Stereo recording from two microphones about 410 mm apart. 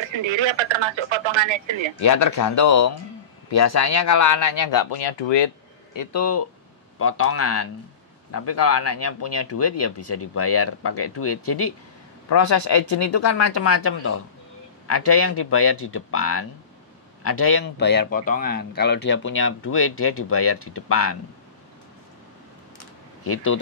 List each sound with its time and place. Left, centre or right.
0.2 s speech: right
2.0 s speech: left
4.9 s speech: left
5.9 s speech: left
23.2 s speech: left